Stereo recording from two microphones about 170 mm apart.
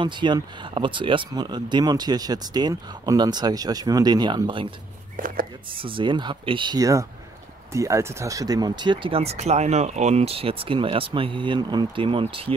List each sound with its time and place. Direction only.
0.0 s speech: 25° right (ahead or behind)
5.1 s chopping: 55° right (ahead or behind)
5.8 s speech: 30° right (ahead or behind)